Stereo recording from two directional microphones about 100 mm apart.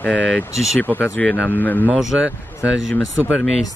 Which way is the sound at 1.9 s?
5° right (ahead or behind).